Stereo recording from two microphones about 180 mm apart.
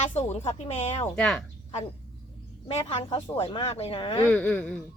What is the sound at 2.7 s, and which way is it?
A woman's voice, 35° left (ahead or behind).